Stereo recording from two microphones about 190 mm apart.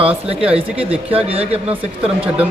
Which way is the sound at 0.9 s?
30° right (ahead or behind).